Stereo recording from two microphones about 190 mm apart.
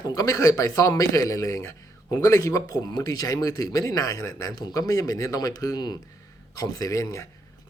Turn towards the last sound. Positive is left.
turn(degrees=15)  # may be behind; listen again after turning